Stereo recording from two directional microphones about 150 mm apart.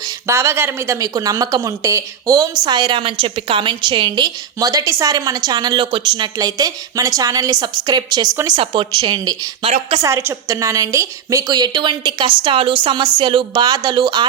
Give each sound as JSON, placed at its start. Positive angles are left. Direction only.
{"t": 0.3, "sound": "a woman's voice", "side_deg": -20}